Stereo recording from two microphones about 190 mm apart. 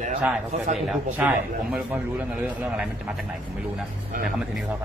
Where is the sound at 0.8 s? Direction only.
5° right (ahead or behind).